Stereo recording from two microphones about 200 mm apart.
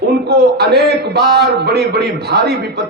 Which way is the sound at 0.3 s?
55° right (ahead or behind).